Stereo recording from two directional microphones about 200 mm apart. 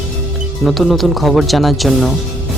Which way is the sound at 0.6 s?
Centre (ahead or behind).